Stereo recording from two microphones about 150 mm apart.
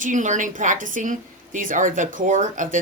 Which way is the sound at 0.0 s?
55° right (ahead or behind).